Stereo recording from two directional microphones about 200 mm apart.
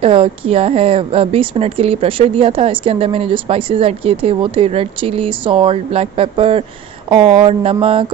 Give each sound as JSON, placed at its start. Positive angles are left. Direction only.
{"t": 0.0, "sound": "a woman's voice", "side_deg": -30}